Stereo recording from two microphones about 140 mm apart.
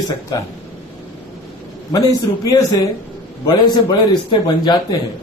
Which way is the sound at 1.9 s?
25° left (ahead or behind).